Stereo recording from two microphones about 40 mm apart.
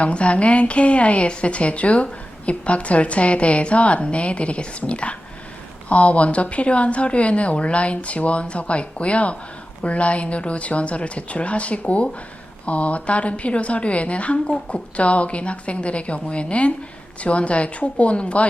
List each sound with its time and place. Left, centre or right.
0.0 s a woman's voice: left